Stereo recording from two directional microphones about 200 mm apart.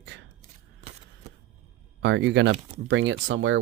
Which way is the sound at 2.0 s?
60° right (ahead or behind).